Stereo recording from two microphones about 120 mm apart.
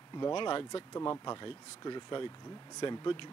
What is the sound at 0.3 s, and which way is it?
Speech, 45° left (ahead or behind).